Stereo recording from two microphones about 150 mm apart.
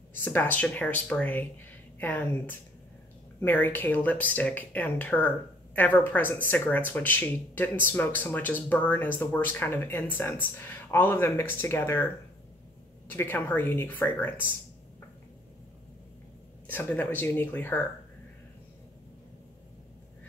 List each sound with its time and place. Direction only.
0.1 s speech: 15° left (ahead or behind)
13.1 s speech: 15° left (ahead or behind)
16.7 s speech: 10° left (ahead or behind)